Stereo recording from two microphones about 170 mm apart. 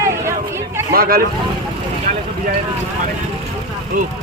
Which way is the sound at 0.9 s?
60° right (ahead or behind).